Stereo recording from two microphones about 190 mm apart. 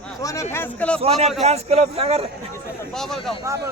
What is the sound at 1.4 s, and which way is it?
Speech, 35° right (ahead or behind).